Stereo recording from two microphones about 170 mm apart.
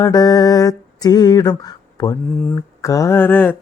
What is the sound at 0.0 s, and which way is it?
Mantra, 20° left (ahead or behind).